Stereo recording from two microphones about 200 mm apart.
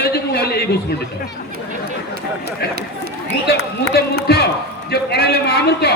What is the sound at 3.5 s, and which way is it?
Speech, 50° left (ahead or behind).